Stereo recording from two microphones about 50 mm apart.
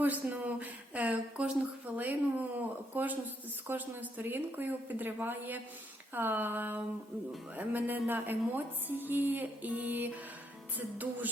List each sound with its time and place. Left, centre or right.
0.0 s speech: right
2.0 s music: right
9.6 s music: right